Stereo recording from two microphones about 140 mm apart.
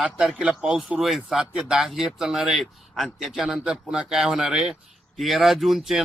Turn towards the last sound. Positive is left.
turn(degrees=0)  # may be behind; listen again after turning